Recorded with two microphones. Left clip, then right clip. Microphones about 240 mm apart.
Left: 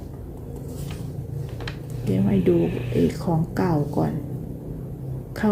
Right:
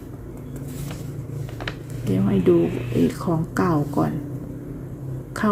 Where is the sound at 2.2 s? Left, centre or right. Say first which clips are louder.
Right 3 dB; centre.